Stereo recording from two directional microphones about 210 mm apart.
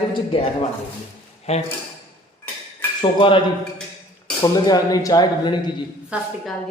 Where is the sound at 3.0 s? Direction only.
25° left (ahead or behind).